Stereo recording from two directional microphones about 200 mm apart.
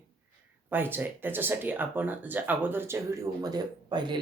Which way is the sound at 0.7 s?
10° right (ahead or behind).